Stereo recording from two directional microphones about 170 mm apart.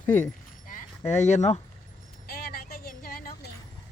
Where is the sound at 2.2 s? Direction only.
60° left (ahead or behind).